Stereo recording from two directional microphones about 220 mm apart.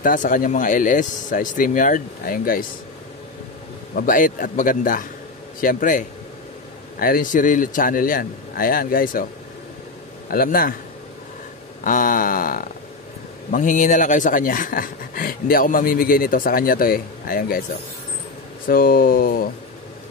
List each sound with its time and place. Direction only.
0.0 s speech: 35° left (ahead or behind)
3.9 s speech: 40° left (ahead or behind)
10.3 s speech: 40° left (ahead or behind)
11.8 s speech: 40° left (ahead or behind)
18.7 s speech: 40° left (ahead or behind)